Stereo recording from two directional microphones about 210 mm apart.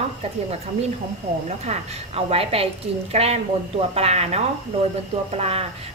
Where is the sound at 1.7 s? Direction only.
30° right (ahead or behind).